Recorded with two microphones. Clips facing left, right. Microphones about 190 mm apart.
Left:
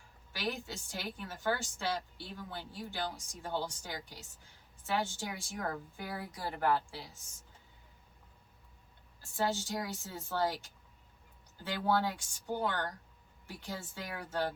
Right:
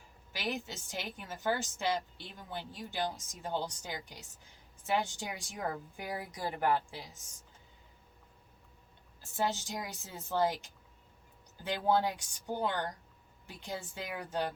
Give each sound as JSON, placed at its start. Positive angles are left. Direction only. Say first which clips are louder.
{"t": 0.3, "sound": "a woman's voice", "louder": "even", "side_deg": -20}
{"t": 9.3, "sound": "a woman's voice", "louder": "left 1 dB", "side_deg": -20}